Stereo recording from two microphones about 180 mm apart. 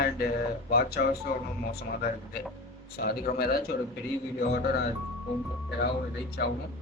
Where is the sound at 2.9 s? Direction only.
60° left (ahead or behind).